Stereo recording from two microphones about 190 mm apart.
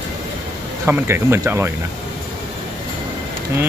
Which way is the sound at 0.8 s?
10° right (ahead or behind).